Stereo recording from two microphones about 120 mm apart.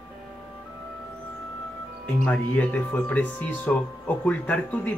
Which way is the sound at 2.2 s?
15° left (ahead or behind).